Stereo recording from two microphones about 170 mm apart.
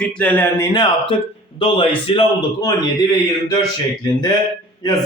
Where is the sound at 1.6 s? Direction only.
30° left (ahead or behind).